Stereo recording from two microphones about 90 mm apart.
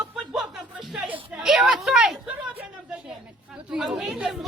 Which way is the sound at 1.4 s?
5° right (ahead or behind).